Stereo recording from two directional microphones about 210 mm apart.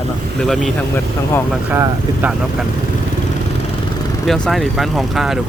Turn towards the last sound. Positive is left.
turn(degrees=0)  # may be behind; listen again after turning